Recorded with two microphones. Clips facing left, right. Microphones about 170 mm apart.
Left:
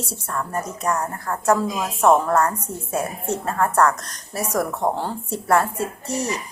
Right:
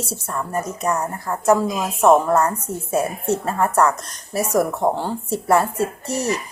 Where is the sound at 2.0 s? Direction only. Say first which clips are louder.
Right 2 dB; 15° right (ahead or behind).